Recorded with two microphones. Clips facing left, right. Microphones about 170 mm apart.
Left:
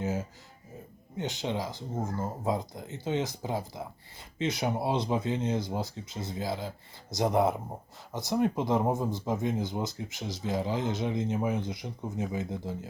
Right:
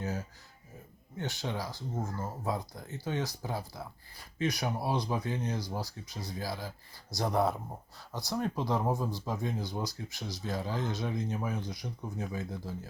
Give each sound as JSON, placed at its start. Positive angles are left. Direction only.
{"t": 0.0, "sound": "music", "side_deg": 20}
{"t": 1.1, "sound": "speech", "side_deg": 20}